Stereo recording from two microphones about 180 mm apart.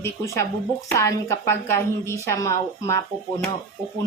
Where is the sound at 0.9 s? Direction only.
15° left (ahead or behind).